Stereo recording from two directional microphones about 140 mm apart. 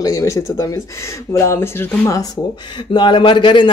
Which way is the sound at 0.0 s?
25° left (ahead or behind).